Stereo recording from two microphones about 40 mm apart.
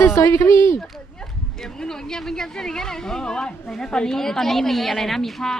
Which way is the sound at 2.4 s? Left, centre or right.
Centre.